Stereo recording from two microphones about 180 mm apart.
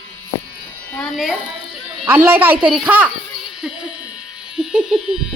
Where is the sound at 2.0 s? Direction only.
10° right (ahead or behind).